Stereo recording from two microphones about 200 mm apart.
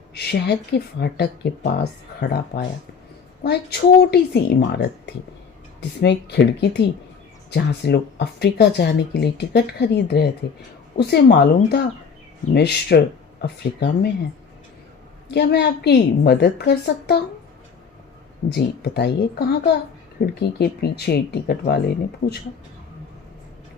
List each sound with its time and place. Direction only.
0.1 s speech: 55° left (ahead or behind)
15.3 s speech: 55° left (ahead or behind)
18.4 s speech: 55° left (ahead or behind)